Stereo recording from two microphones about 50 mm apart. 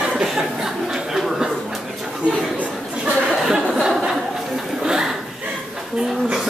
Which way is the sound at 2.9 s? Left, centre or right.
Centre.